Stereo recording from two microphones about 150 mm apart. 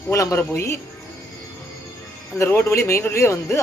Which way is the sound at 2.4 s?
15° left (ahead or behind).